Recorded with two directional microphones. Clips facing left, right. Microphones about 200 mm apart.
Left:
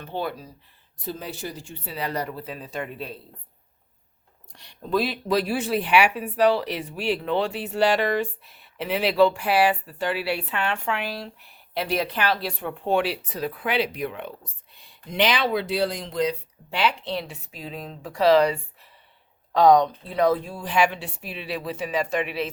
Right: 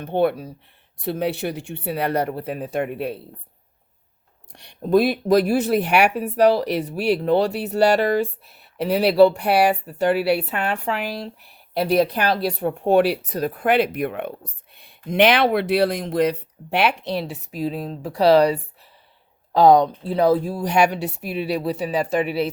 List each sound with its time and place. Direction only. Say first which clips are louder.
0.0 s speech: right 10 dB; 60° right (ahead or behind)
4.8 s speech: right 7 dB; 50° right (ahead or behind)
17.0 s speech: right 4 dB; 40° right (ahead or behind)